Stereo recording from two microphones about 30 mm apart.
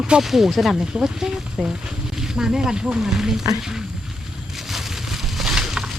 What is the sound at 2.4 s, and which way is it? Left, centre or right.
Speech, right.